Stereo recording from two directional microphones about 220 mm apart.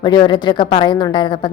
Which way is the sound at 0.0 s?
20° left (ahead or behind).